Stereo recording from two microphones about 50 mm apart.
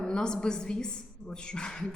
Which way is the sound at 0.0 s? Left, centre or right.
Centre.